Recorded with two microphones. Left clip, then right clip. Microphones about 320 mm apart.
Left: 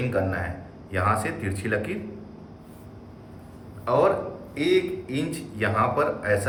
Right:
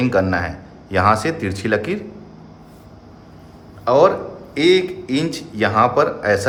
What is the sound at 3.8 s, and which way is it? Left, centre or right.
A man's voice, centre.